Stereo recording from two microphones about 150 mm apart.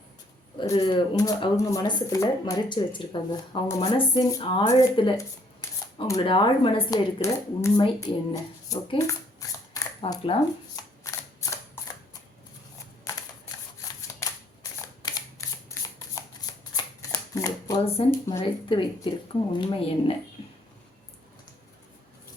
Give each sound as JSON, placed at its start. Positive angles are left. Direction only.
{"t": 0.6, "sound": "speech", "side_deg": 30}
{"t": 6.2, "sound": "speech", "side_deg": 35}
{"t": 6.9, "sound": "speech", "side_deg": 20}
{"t": 9.0, "sound": "shuffling cards", "side_deg": 20}
{"t": 10.0, "sound": "speech", "side_deg": 40}
{"t": 10.8, "sound": "camera", "side_deg": 20}
{"t": 13.8, "sound": "a sound", "side_deg": 25}
{"t": 16.7, "sound": "shuffling cards", "side_deg": 25}
{"t": 17.8, "sound": "speech", "side_deg": 40}